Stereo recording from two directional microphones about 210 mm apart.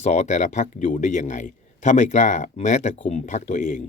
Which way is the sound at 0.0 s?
35° left (ahead or behind).